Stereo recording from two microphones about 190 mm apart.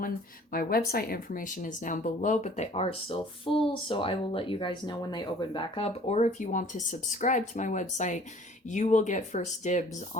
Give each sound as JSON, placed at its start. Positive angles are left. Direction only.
{"t": 0.5, "sound": "speech", "side_deg": 50}